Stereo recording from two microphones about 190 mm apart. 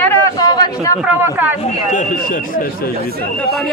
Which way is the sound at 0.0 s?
10° left (ahead or behind).